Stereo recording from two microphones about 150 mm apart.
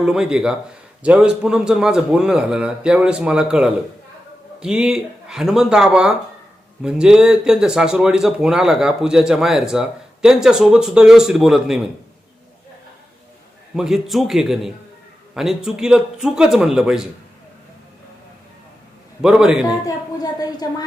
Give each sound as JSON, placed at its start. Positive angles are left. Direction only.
{"t": 0.0, "sound": "speech", "side_deg": -5}
{"t": 13.7, "sound": "speech", "side_deg": -5}
{"t": 19.2, "sound": "speech", "side_deg": -5}
{"t": 20.4, "sound": "a woman's voice", "side_deg": 25}